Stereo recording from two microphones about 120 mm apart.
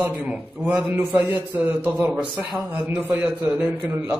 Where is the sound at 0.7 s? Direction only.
15° right (ahead or behind).